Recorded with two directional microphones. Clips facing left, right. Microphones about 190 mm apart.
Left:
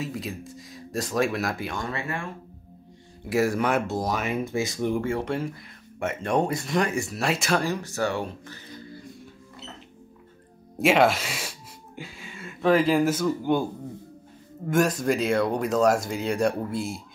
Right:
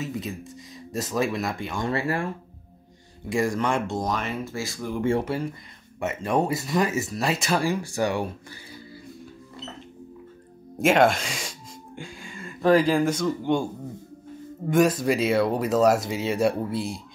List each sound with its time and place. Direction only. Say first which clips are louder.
0.0 s speech: right 1 dB; centre (ahead or behind)
1.9 s speech: right 6 dB; 35° right (ahead or behind)
3.3 s speech: left 1 dB; 5° left (ahead or behind)
5.2 s speech: even; centre (ahead or behind)
7.6 s speech: right 2 dB; 10° right (ahead or behind)
10.8 s speech: right 1 dB; centre (ahead or behind)
14.7 s speech: right 2 dB; centre (ahead or behind)